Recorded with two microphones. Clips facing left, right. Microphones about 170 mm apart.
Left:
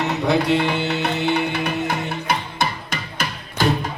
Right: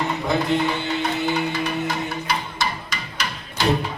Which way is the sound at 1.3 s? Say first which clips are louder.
Left 2 dB; 60° left (ahead or behind).